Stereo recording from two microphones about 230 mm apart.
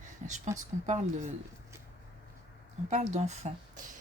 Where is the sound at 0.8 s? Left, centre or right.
Right.